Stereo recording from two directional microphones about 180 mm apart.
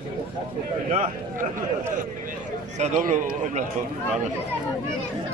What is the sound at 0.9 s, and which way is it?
A man's voice, 45° right (ahead or behind).